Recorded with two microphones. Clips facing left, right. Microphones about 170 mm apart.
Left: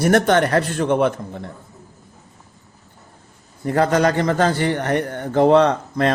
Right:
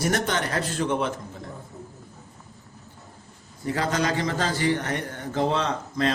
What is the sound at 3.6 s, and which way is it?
A man's voice, 55° left (ahead or behind).